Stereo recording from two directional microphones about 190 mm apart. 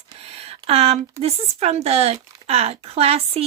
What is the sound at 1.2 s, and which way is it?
A woman's voice, 35° right (ahead or behind).